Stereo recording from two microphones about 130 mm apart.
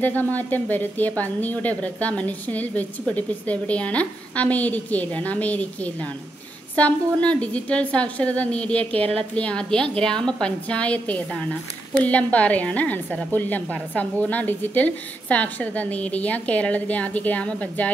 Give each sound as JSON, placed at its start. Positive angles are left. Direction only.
{"t": 0.0, "sound": "a woman's voice", "side_deg": 15}